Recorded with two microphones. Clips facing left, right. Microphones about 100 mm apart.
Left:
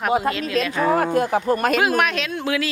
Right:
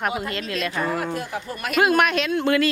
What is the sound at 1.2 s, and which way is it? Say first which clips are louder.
Speech: left 11 dB; 45° left (ahead or behind).